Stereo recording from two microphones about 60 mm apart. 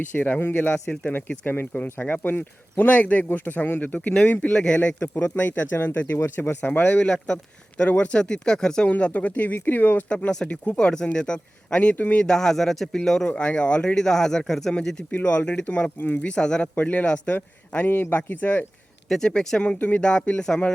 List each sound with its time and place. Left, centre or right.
0.0 s speech: left
6.1 s speech: left
6.6 s speech: left; by 8.9 s centre
8.9 s speech: left
12.2 s speech: centre
15.1 s speech: left
16.0 s speech: left
19.0 s speech: centre